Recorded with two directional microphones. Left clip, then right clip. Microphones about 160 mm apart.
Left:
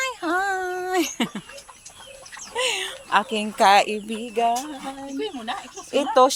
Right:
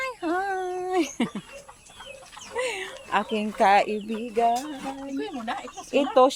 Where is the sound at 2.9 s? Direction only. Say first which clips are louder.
Left 4 dB; centre (ahead or behind).